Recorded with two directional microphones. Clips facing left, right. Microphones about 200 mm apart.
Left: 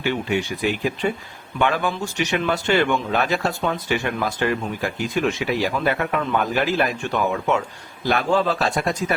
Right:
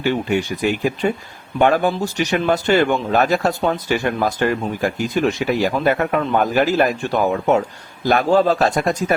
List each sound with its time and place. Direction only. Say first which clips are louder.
0.0 s speech: right 4 dB; 40° right (ahead or behind)